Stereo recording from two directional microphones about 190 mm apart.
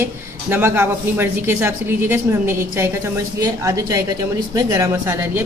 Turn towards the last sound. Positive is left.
turn(degrees=-15)  # may be behind; listen again after turning